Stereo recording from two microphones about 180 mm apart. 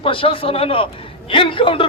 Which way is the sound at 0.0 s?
30° left (ahead or behind).